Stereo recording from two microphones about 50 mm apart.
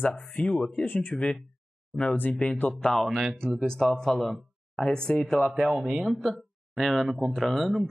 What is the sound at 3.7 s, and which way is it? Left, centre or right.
Speech, centre.